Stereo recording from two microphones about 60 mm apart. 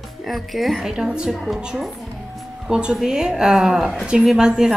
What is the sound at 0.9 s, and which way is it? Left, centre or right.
A woman's voice, centre.